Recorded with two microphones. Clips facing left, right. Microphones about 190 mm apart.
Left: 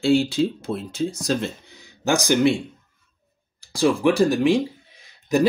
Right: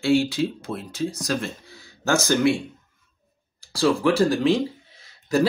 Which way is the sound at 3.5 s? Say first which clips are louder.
Left 1 dB; 15° left (ahead or behind).